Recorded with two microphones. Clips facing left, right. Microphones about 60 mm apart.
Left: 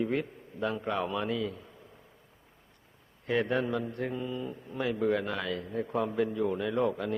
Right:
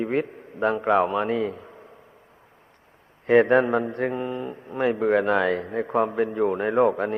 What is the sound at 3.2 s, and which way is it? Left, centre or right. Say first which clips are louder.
A man's voice: right 12 dB; right.